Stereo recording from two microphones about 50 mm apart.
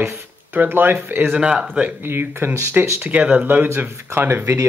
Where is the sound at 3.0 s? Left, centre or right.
Right.